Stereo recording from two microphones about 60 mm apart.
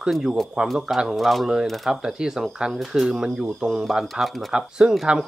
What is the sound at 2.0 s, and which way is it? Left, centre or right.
Speech, centre.